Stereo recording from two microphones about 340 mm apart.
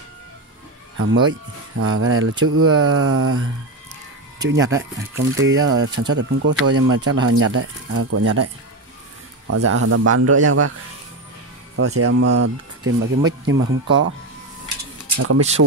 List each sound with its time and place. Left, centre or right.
0.9 s speech: right
4.5 s speech: right
9.5 s speech: right
11.7 s speech: right
13.5 s speech: right
15.1 s speech: right